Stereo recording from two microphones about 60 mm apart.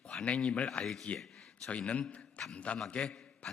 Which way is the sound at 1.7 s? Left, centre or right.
Left.